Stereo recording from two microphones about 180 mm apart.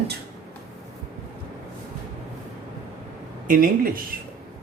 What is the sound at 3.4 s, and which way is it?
Speech, 50° right (ahead or behind).